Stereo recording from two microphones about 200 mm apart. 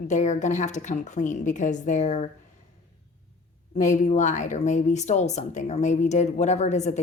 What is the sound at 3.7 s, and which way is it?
A woman's voice, 35° left (ahead or behind).